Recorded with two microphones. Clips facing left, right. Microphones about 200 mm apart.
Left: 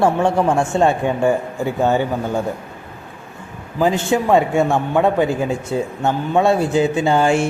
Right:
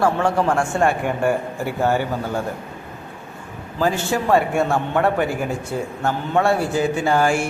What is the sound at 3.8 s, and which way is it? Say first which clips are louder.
A man's voice: left 4 dB; 20° left (ahead or behind).